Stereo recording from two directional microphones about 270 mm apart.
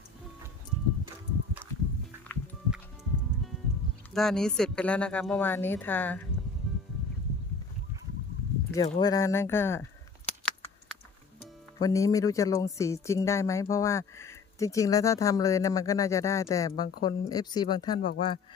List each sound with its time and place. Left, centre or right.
2.2 s music: centre
4.1 s speech: centre
8.7 s speech: centre
10.4 s typing: centre
11.8 s speech: centre